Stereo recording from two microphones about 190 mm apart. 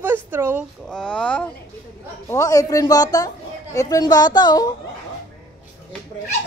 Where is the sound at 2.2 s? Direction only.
15° left (ahead or behind).